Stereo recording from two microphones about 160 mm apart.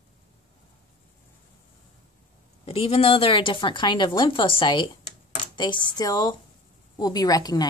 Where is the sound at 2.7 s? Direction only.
35° left (ahead or behind).